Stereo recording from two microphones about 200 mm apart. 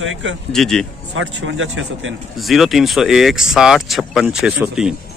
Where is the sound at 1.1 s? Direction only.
70° right (ahead or behind).